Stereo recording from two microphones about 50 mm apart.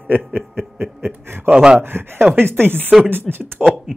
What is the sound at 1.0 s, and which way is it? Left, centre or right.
Snicker, right.